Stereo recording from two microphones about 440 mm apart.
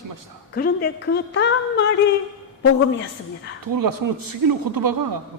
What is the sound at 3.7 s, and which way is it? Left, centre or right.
Speech, right.